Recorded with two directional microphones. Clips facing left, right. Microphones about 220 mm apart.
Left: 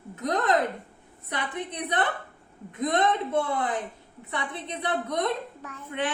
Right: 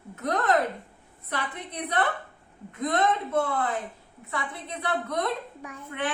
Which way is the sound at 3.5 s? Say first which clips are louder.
Left 1 dB; 15° left (ahead or behind).